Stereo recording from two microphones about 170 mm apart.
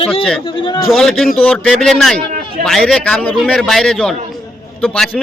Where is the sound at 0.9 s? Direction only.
Centre (ahead or behind).